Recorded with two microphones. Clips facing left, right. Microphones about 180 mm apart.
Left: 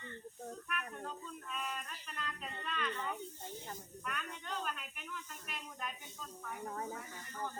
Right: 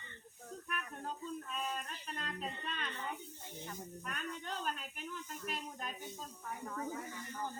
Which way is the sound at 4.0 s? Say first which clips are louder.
Even; 35° right (ahead or behind).